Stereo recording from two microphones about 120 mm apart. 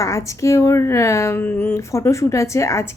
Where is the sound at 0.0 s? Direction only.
25° left (ahead or behind).